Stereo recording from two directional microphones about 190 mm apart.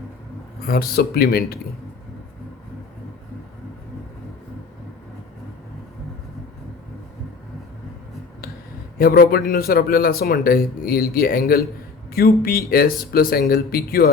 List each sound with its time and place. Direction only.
0.7 s speech: 55° left (ahead or behind)
9.0 s speech: 50° left (ahead or behind)